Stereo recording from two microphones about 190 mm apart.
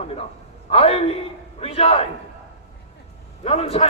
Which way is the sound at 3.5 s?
30° left (ahead or behind).